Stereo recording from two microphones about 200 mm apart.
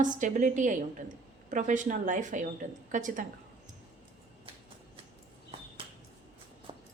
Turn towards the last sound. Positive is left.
turn(degrees=-25)  # may be behind; listen again after turning